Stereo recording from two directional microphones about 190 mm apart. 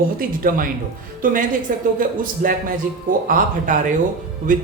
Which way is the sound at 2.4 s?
50° right (ahead or behind).